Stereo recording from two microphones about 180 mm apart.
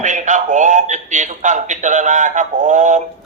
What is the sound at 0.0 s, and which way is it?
A man's voice, 45° right (ahead or behind).